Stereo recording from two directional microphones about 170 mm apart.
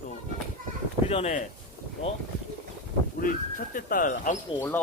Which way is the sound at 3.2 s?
55° left (ahead or behind).